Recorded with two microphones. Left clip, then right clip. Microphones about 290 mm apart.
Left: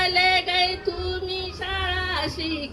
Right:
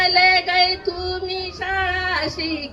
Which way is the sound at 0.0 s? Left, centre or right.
Centre.